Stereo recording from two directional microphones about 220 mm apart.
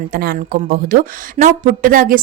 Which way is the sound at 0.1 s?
40° right (ahead or behind).